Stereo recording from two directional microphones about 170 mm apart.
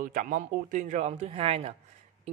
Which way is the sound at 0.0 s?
50° right (ahead or behind).